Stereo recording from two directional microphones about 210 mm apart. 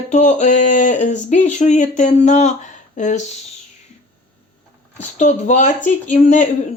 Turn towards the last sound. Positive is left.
turn(degrees=35)  # may be behind; listen again after turning